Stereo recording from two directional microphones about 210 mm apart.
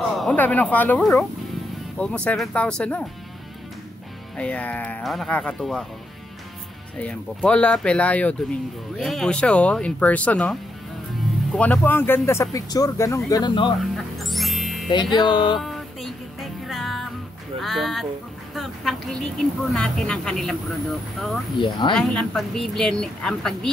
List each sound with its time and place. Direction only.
0.1 s speech: 5° left (ahead or behind)
4.4 s speech: 5° left (ahead or behind)
7.0 s speech: 5° left (ahead or behind); by 13.7 s 20° left (ahead or behind)
13.7 s music: centre (ahead or behind)
14.9 s speech: 20° left (ahead or behind)
15.6 s music: centre (ahead or behind)
17.6 s speech: centre (ahead or behind)
21.5 s speech: 20° left (ahead or behind)
21.9 s speech: centre (ahead or behind)